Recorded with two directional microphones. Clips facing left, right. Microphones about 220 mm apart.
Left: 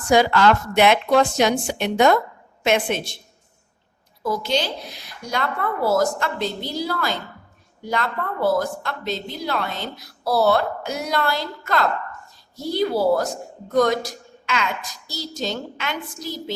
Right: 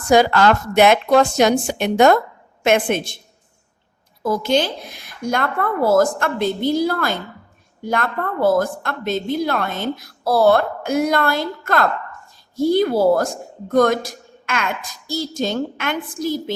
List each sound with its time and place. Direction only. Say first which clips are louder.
0.1 s a woman's voice: right 2 dB; 45° right (ahead or behind)
4.2 s a woman's voice: right 5 dB; 50° right (ahead or behind)